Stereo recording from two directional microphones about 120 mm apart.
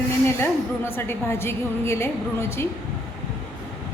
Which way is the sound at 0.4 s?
20° left (ahead or behind).